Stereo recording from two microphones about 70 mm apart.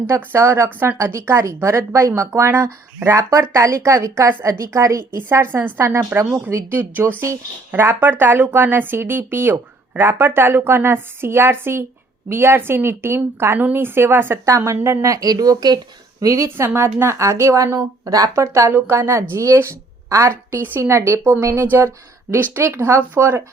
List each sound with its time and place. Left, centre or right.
0.1 s a woman's voice: right
4.7 s speech: right
5.1 s a woman's voice: right
14.4 s speech: right
16.2 s speech: right
16.6 s speech: right
18.7 s a woman's voice: right